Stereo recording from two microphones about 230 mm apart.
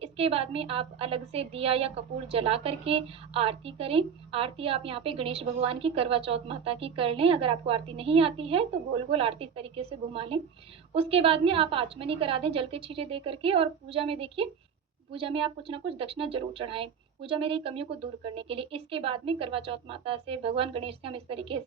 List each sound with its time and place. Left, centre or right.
0.0 s a woman's voice: right